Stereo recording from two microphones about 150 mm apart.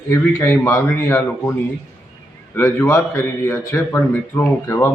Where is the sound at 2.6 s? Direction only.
15° left (ahead or behind).